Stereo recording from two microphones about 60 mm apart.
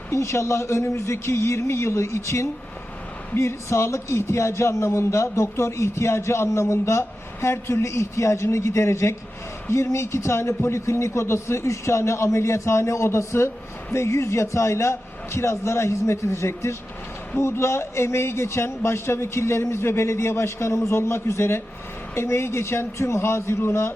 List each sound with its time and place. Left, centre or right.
0.1 s a man's voice: left